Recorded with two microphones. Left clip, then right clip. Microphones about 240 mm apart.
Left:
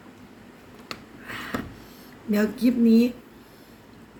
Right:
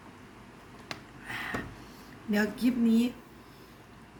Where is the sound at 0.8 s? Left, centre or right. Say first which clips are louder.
Left 3 dB; centre.